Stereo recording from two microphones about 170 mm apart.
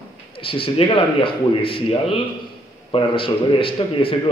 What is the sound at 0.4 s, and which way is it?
A man's voice, 30° left (ahead or behind).